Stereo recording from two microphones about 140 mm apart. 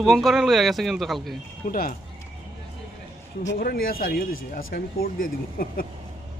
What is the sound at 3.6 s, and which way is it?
Speech, 90° left.